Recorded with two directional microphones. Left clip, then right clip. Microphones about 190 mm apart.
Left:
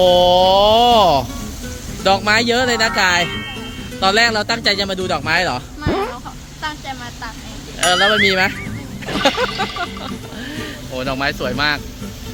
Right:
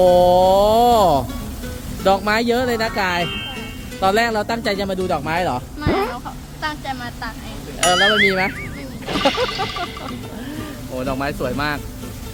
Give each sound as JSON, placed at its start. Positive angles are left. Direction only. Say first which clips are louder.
{"t": 0.0, "sound": "a sound", "louder": "left 1 dB", "side_deg": -10}
{"t": 2.0, "sound": "speech", "louder": "left 2 dB", "side_deg": -5}
{"t": 4.0, "sound": "speech", "louder": "left 3 dB", "side_deg": -10}
{"t": 5.9, "sound": "a sound", "louder": "even", "side_deg": 0}
{"t": 6.6, "sound": "vehicle", "louder": "right 1 dB", "side_deg": -30}
{"t": 7.8, "sound": "speech", "louder": "left 1 dB", "side_deg": 0}